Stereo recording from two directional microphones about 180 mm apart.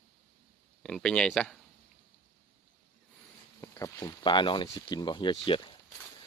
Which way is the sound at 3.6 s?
15° left (ahead or behind).